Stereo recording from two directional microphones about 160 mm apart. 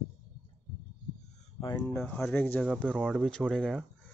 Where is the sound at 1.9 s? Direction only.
10° left (ahead or behind).